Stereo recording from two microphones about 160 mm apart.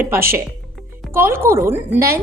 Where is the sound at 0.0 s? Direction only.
15° right (ahead or behind).